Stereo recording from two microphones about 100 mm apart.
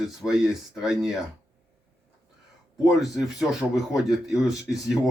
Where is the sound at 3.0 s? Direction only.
5° right (ahead or behind).